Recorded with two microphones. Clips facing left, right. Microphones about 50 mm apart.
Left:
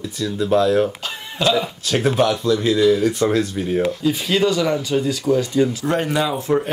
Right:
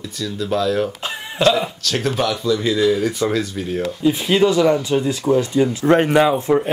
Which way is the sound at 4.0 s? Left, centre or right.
Right.